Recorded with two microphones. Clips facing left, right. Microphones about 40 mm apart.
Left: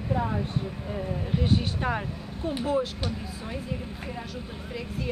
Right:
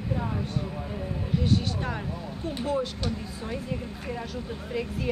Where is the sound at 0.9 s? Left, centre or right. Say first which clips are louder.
Left 2 dB; centre.